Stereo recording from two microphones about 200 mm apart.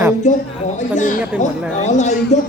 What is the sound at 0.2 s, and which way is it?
A woman's voice, 35° left (ahead or behind).